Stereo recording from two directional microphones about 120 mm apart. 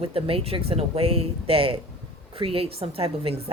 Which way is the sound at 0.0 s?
50° right (ahead or behind).